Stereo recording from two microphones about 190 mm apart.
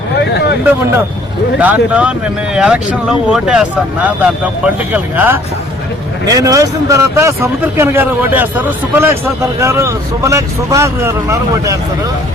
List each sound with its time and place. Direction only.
0.2 s vehicle: 60° left (ahead or behind)
1.5 s speech: 10° right (ahead or behind)